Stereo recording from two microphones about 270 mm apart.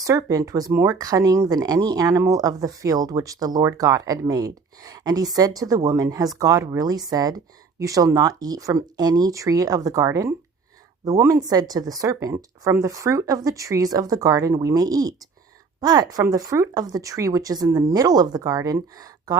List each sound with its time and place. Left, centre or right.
0.0 s speech: centre